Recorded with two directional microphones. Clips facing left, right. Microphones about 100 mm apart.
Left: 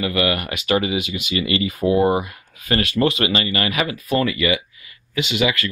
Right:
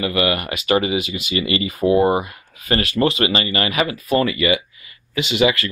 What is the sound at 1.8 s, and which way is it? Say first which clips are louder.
Speech: right 3 dB; 15° right (ahead or behind).